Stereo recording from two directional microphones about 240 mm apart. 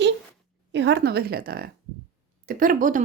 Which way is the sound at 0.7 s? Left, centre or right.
Right.